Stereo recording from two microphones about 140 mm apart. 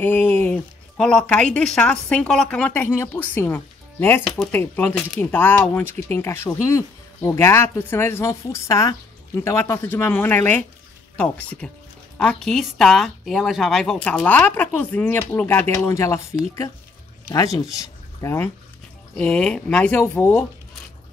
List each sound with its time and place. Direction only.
0.0 s speech: 15° left (ahead or behind)
19.1 s speech: 5° left (ahead or behind)